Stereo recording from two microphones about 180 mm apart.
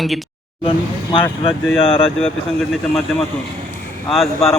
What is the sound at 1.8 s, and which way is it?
Speech, 30° left (ahead or behind).